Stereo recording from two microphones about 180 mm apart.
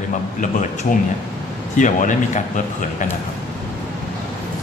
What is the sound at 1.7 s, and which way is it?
Speech, 45° left (ahead or behind).